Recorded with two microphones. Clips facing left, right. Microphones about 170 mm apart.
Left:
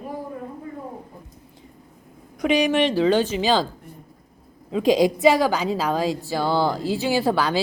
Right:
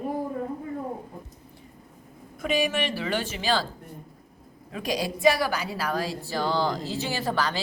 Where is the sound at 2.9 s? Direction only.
20° left (ahead or behind).